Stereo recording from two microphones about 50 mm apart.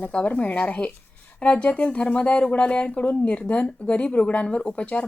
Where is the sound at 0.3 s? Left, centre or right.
Left.